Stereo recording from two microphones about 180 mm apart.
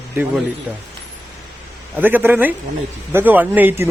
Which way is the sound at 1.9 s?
10° right (ahead or behind).